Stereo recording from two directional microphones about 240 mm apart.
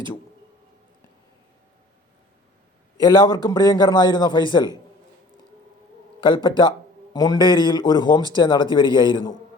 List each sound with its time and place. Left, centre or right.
3.0 s a man's voice: centre
6.1 s a man's voice: centre